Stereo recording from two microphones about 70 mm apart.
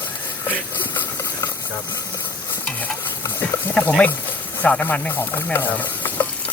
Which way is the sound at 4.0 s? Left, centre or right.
Left.